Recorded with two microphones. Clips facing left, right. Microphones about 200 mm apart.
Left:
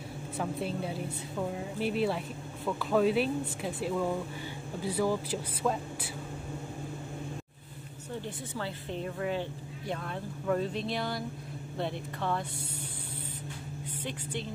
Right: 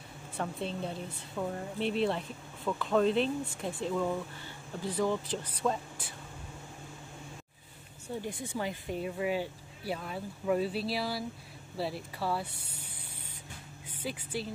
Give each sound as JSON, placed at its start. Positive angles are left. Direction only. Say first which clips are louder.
{"t": 0.4, "sound": "speech", "louder": "left 2 dB", "side_deg": 5}
{"t": 8.2, "sound": "speech", "louder": "right 2 dB", "side_deg": -15}
{"t": 14.0, "sound": "speech", "louder": "right 2 dB", "side_deg": -5}